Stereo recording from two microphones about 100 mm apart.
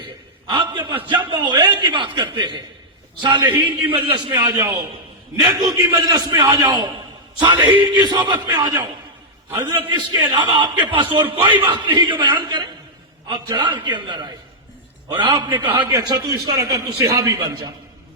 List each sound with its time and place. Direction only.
0.4 s a man's voice: 55° right (ahead or behind)
15.9 s a man's voice: 40° right (ahead or behind)